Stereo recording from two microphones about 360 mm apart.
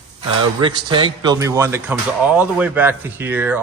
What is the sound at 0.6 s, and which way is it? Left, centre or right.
A man's voice, centre.